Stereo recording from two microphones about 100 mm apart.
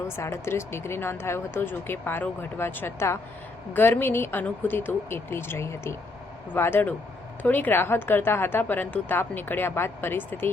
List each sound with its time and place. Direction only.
0.2 s a woman's voice: 25° left (ahead or behind)